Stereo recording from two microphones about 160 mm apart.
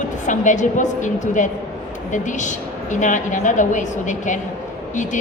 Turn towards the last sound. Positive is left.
turn(degrees=50)  # may be behind; listen again after turning